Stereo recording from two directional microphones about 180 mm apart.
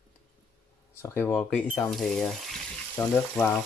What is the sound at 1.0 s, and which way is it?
Speech, 10° left (ahead or behind).